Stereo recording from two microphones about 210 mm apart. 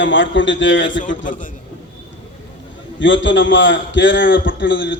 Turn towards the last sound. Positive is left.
turn(degrees=65)  # may be behind; listen again after turning